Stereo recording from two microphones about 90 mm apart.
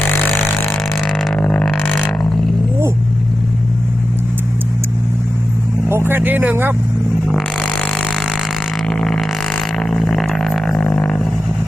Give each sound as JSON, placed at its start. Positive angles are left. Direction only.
{"t": 1.4, "sound": "didgeridoo", "side_deg": 10}
{"t": 1.7, "sound": "didgeridoo", "side_deg": 20}
{"t": 5.9, "sound": "speech", "side_deg": -25}
{"t": 7.3, "sound": "music", "side_deg": 10}
{"t": 8.9, "sound": "didgeridoo", "side_deg": 5}
{"t": 10.8, "sound": "a sound", "side_deg": 10}